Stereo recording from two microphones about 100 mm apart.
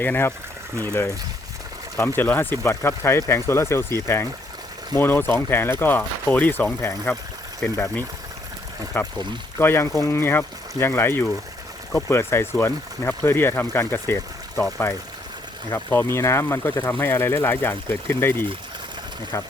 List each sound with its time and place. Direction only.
0.0 s speech: 20° left (ahead or behind)
2.0 s speech: 20° left (ahead or behind)